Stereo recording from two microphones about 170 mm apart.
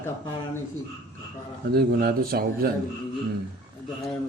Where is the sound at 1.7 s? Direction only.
65° right (ahead or behind).